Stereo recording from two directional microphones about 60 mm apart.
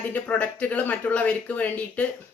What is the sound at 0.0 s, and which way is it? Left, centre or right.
Speech, left.